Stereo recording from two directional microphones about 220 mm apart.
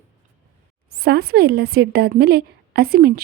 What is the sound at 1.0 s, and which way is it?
A woman's voice, 45° right (ahead or behind).